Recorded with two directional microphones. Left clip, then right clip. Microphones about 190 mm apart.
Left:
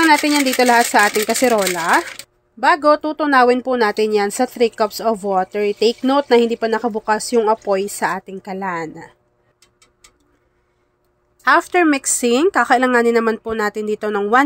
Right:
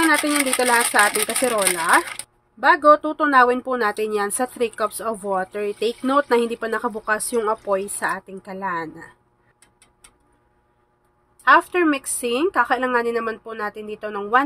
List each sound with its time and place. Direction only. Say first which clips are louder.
0.0 s a woman's voice: left 5 dB; 35° left (ahead or behind)
11.4 s a woman's voice: left 2 dB; 35° left (ahead or behind)